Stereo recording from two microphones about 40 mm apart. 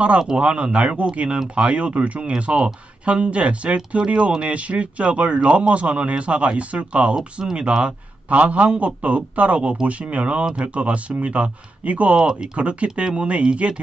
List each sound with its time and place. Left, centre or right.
0.4 s a man's voice: right
7.2 s speech: centre
7.8 s a man's voice: right
12.2 s speech: right